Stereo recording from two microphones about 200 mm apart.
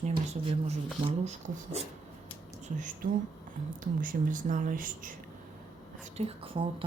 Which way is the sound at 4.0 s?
40° right (ahead or behind).